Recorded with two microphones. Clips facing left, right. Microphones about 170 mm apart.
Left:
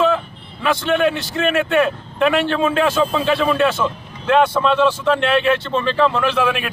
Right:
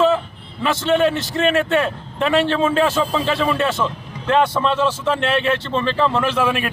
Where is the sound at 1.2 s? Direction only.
Centre (ahead or behind).